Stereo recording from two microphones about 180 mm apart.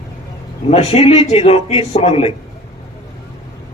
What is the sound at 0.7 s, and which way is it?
A man's voice, 40° left (ahead or behind).